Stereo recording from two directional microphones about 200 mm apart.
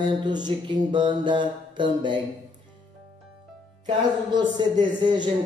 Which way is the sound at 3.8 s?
20° right (ahead or behind).